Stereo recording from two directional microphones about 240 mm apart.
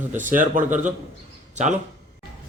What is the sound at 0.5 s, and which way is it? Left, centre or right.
Speech, right.